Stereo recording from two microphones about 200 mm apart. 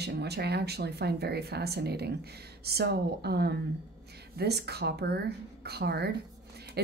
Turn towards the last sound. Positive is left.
turn(degrees=-55)  # may be behind; listen again after turning